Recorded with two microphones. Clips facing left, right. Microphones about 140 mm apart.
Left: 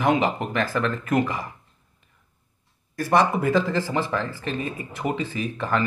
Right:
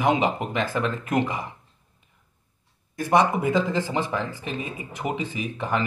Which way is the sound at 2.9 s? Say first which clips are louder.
Even; 20° right (ahead or behind).